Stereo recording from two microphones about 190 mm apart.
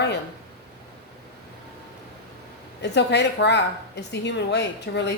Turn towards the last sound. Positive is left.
turn(degrees=65)  # may be behind; listen again after turning